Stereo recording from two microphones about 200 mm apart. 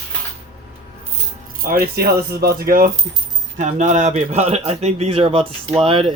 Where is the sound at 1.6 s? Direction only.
50° right (ahead or behind); by 6.1 s 25° right (ahead or behind).